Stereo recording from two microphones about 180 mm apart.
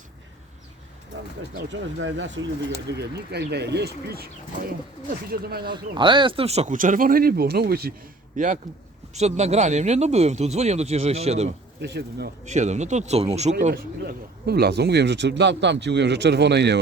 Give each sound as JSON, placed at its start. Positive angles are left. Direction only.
{"t": 2.0, "sound": "speech", "side_deg": -90}
{"t": 5.6, "sound": "speech", "side_deg": -25}
{"t": 8.4, "sound": "speech", "side_deg": -45}
{"t": 11.8, "sound": "speech", "side_deg": -65}
{"t": 12.5, "sound": "speech", "side_deg": -40}
{"t": 14.0, "sound": "speech", "side_deg": -65}